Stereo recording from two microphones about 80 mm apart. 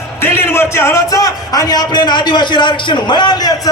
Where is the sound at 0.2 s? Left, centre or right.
Left.